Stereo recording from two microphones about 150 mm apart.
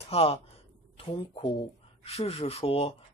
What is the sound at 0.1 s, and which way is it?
Speech, 40° left (ahead or behind).